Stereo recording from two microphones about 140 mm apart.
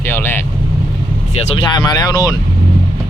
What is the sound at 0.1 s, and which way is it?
Vehicle, 15° left (ahead or behind).